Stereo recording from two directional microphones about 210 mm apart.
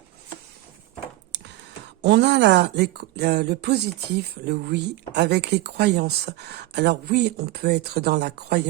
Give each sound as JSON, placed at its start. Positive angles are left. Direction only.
{"t": 2.0, "sound": "speech", "side_deg": -55}